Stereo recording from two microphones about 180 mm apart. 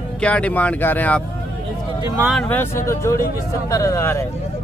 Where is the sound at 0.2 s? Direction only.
5° left (ahead or behind).